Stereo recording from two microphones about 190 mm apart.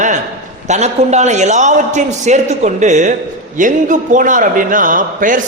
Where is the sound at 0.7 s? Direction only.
35° right (ahead or behind).